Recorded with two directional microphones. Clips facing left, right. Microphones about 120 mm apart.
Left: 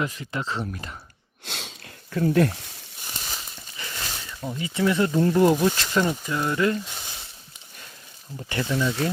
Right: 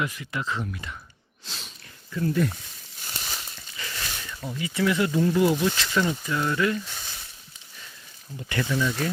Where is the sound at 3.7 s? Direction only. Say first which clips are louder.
Left 1 dB; 25° left (ahead or behind).